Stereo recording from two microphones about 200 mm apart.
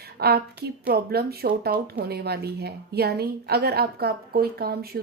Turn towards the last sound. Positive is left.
turn(degrees=-50)  # may be behind; listen again after turning